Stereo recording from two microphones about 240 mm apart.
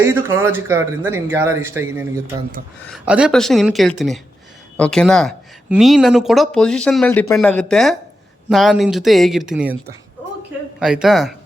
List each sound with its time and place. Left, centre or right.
0.0 s speech: centre
10.8 s speech: centre